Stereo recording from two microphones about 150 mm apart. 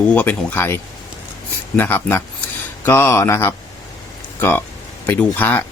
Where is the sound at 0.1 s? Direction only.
10° left (ahead or behind).